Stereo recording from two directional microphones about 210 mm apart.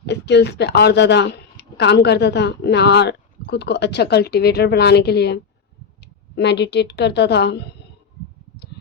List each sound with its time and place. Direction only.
0.0 s speech: 55° left (ahead or behind)